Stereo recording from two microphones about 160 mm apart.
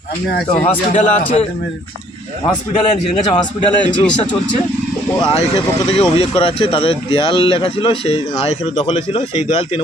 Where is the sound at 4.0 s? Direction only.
5° left (ahead or behind).